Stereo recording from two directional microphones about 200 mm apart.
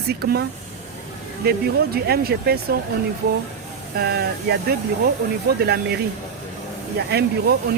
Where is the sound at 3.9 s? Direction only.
55° right (ahead or behind).